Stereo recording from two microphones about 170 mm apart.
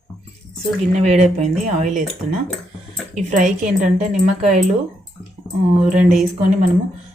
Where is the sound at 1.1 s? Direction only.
40° right (ahead or behind).